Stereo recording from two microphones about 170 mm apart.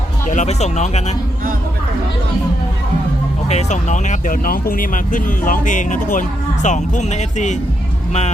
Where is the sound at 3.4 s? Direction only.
40° left (ahead or behind).